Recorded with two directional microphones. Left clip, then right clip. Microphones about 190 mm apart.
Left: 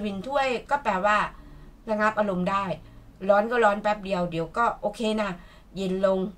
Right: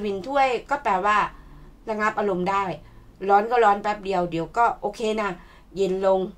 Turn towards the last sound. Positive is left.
turn(degrees=-40)  # may be behind; listen again after turning